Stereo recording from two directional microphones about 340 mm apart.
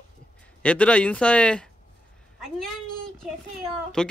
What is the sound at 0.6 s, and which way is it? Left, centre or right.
Speech, centre.